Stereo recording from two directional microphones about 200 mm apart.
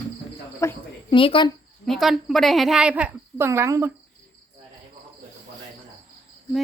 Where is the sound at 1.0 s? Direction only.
25° left (ahead or behind).